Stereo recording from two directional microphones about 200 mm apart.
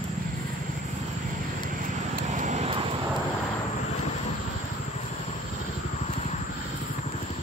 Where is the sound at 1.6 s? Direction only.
45° right (ahead or behind); by 3.0 s 25° right (ahead or behind).